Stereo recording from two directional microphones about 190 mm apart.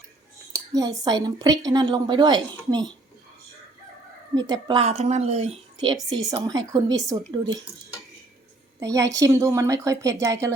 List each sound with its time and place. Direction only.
0.5 s dishes: 15° right (ahead or behind)
1.0 s a woman's voice: 20° right (ahead or behind)
4.4 s a woman's voice: 20° right (ahead or behind)
4.8 s a woman's voice: 35° right (ahead or behind)
8.8 s a woman's voice: 15° right (ahead or behind)